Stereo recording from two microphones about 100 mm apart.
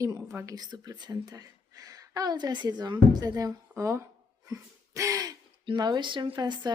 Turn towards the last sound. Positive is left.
turn(degrees=-45)  # may be behind; listen again after turning